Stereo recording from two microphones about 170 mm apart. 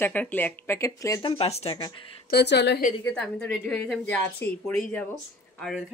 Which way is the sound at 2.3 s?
75° left (ahead or behind).